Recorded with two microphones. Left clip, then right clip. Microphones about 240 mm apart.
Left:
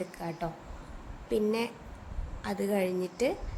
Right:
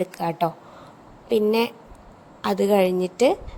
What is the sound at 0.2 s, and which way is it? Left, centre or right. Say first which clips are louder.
A woman's voice: right 13 dB; right.